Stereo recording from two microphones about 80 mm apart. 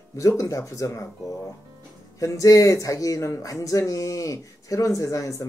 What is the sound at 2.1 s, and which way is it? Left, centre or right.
Speech, left.